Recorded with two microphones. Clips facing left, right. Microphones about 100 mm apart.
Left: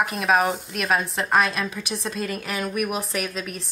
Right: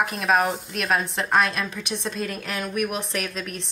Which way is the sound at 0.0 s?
Centre (ahead or behind).